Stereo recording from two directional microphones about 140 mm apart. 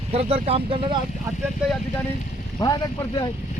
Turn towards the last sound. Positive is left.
turn(degrees=30)  # may be behind; listen again after turning